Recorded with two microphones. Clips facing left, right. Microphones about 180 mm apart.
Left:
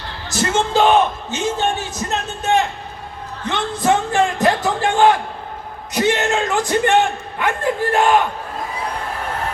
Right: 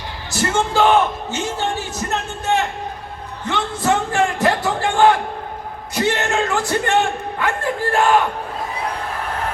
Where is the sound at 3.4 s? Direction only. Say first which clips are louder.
Left 1 dB; 20° left (ahead or behind).